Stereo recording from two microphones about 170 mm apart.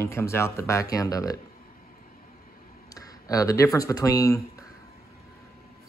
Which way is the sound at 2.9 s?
20° left (ahead or behind).